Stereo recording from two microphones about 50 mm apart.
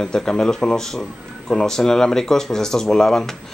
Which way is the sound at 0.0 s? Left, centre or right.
Centre.